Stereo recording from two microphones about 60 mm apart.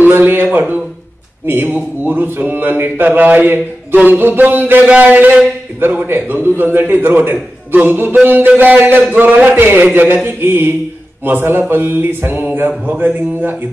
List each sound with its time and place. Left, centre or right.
0.0 s speech: right